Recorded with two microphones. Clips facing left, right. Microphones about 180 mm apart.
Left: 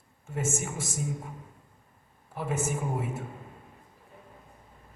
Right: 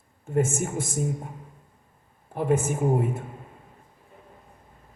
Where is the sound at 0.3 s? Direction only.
55° right (ahead or behind).